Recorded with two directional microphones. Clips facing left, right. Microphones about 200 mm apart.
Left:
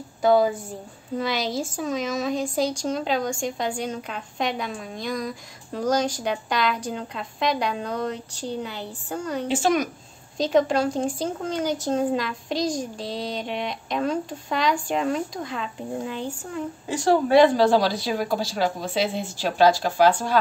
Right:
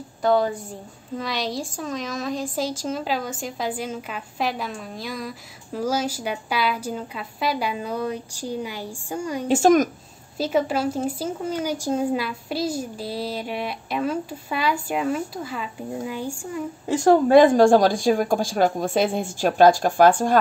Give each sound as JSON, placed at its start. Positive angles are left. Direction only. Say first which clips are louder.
{"t": 0.2, "sound": "a woman's voice", "louder": "left 2 dB", "side_deg": 0}
{"t": 9.5, "sound": "a woman's voice", "louder": "right 6 dB", "side_deg": -45}
{"t": 10.3, "sound": "speech", "louder": "left 2 dB", "side_deg": -5}
{"t": 16.8, "sound": "a woman's voice", "louder": "right 4 dB", "side_deg": -45}